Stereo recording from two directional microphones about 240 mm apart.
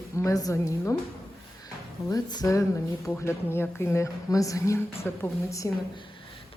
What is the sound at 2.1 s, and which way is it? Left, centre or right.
Speech, centre.